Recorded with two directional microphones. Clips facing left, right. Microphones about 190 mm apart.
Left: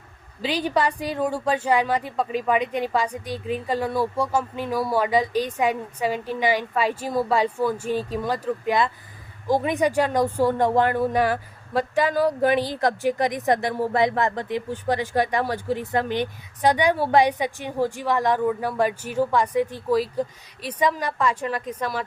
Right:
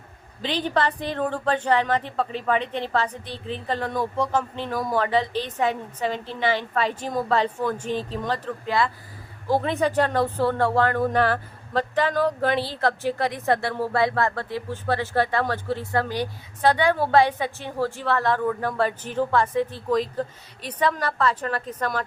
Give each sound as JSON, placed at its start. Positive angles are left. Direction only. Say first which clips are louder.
{"t": 0.4, "sound": "a woman's voice", "louder": "left 1 dB", "side_deg": 10}